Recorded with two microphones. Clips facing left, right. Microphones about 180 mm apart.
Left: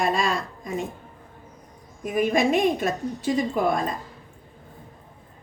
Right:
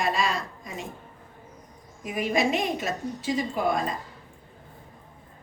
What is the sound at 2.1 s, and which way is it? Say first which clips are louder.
Speech: left 4 dB; 50° left (ahead or behind).